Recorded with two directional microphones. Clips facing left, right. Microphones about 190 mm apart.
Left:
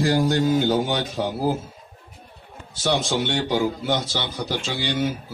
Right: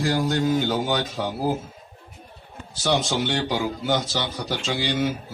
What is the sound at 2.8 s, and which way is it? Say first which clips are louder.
A man's voice: even; centre (ahead or behind).